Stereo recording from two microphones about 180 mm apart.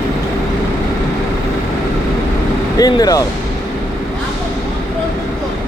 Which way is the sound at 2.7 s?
20° left (ahead or behind).